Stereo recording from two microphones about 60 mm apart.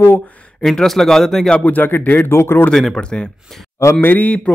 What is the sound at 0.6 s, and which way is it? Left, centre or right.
Speech, centre.